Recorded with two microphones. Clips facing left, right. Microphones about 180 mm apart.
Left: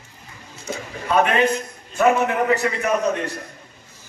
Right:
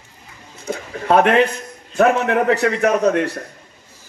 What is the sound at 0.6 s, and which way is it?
A man's voice, 60° right (ahead or behind).